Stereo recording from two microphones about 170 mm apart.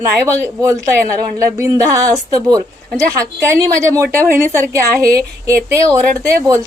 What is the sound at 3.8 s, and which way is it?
A woman's voice, 15° right (ahead or behind).